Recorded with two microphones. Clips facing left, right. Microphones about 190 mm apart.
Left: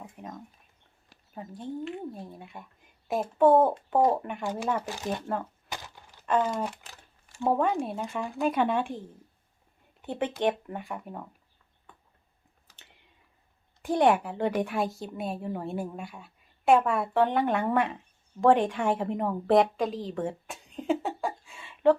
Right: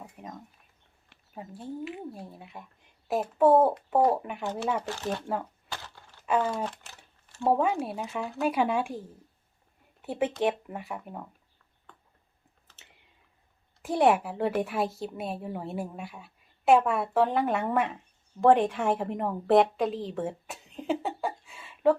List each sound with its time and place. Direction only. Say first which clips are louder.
0.2 s a sound: left 1 dB; centre (ahead or behind)
1.3 s speech: left 2 dB; 5° right (ahead or behind)
4.9 s speech: even; 15° left (ahead or behind)
5.6 s a sound: left 1 dB; 15° left (ahead or behind)
6.2 s speech: left 1 dB; 5° right (ahead or behind)
6.6 s speech: left 1 dB; 10° left (ahead or behind)
7.4 s speech: even; 5° right (ahead or behind)
10.0 s speech: right 1 dB; 5° right (ahead or behind)
13.8 s a woman's voice: even; 5° right (ahead or behind)